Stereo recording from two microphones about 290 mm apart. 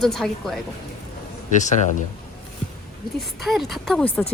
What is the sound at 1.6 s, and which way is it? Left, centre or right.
Speech, left.